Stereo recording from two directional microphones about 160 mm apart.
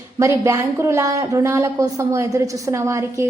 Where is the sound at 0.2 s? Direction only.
20° right (ahead or behind).